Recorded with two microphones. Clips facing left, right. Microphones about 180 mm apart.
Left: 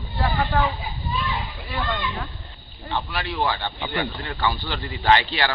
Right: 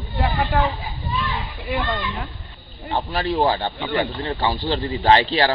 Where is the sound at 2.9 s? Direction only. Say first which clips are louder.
Right 5 dB; 40° right (ahead or behind).